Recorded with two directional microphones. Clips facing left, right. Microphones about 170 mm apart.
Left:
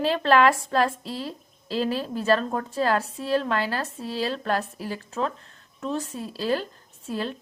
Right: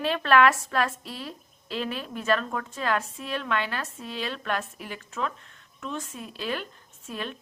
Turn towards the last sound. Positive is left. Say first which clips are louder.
# left 5 dB
turn(degrees=30)  # may be behind; listen again after turning